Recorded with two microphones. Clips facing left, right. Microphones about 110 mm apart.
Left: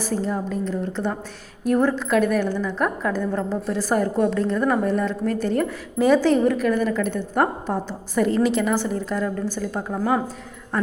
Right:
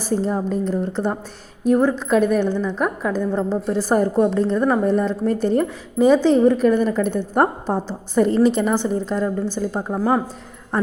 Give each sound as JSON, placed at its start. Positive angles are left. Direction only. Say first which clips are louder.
{"t": 0.0, "sound": "a woman's voice", "louder": "right 3 dB", "side_deg": -30}
{"t": 1.6, "sound": "a woman's voice", "louder": "right 3 dB", "side_deg": -15}
{"t": 3.5, "sound": "a woman's voice", "louder": "right 4 dB", "side_deg": -30}
{"t": 6.0, "sound": "a woman's voice", "louder": "right 3 dB", "side_deg": -20}